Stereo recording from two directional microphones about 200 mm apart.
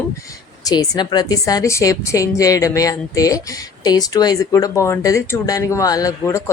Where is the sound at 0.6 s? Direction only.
20° left (ahead or behind).